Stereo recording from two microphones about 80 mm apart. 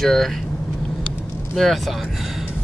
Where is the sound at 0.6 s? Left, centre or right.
Centre.